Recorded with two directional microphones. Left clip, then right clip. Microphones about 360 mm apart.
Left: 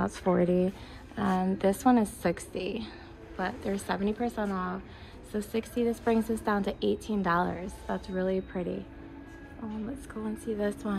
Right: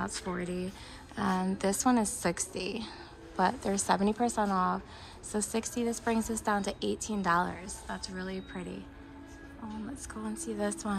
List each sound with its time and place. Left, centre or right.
0.0 s a woman's voice: centre
10.2 s a woman's voice: centre